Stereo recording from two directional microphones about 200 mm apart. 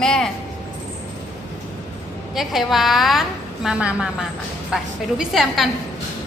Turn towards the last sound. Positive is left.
turn(degrees=0)  # may be behind; listen again after turning